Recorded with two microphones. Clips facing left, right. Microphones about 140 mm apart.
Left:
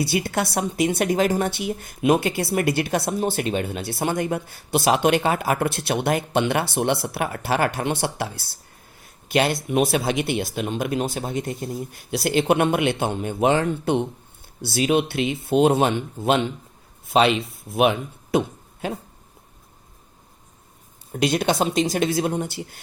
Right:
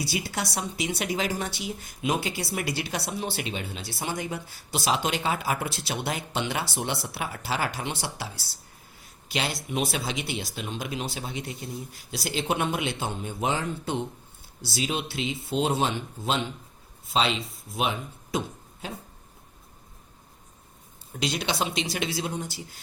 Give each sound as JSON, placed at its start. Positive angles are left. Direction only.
{"t": 0.0, "sound": "speech", "side_deg": 55}
{"t": 11.8, "sound": "speech", "side_deg": 60}
{"t": 21.1, "sound": "speech", "side_deg": 55}